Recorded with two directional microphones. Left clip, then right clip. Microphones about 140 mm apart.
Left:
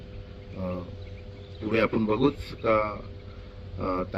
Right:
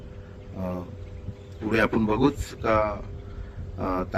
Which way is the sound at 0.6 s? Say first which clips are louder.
Right 1 dB; 15° right (ahead or behind).